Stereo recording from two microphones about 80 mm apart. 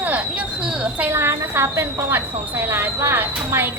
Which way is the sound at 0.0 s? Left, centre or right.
Right.